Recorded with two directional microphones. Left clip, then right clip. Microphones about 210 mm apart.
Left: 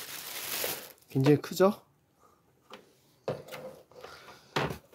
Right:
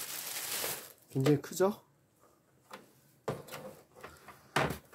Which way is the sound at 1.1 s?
35° left (ahead or behind).